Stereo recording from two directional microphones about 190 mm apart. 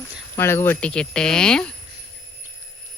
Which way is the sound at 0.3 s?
10° left (ahead or behind).